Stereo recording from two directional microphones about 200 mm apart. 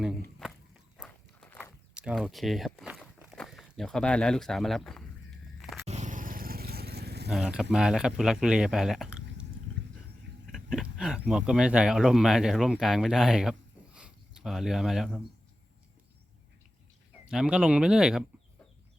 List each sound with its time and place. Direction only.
0.2 s walk: centre (ahead or behind)
2.0 s speech: 5° right (ahead or behind)
5.5 s biting: centre (ahead or behind)
5.8 s vehicle: 35° right (ahead or behind); by 7.3 s 55° right (ahead or behind)
7.3 s speech: centre (ahead or behind)
10.4 s a sound: centre (ahead or behind)
11.3 s speech: 5° right (ahead or behind)
17.2 s speech: 5° right (ahead or behind)